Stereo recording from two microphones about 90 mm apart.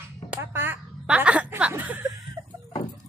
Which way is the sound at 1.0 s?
15° right (ahead or behind).